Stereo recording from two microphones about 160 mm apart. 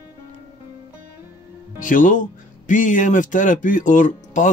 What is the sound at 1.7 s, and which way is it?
Speech, 55° left (ahead or behind).